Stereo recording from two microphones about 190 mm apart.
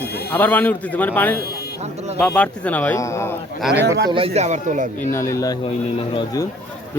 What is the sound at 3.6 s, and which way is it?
Speech, 5° right (ahead or behind).